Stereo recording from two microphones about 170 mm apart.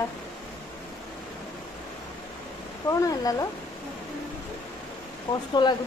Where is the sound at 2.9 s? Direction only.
20° left (ahead or behind).